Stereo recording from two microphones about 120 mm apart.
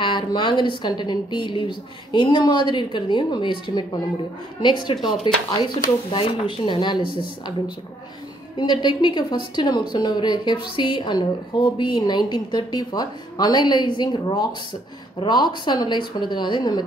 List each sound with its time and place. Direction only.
0.0 s a woman's voice: 40° left (ahead or behind)